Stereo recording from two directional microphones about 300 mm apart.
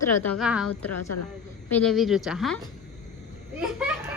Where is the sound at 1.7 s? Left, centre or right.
Centre.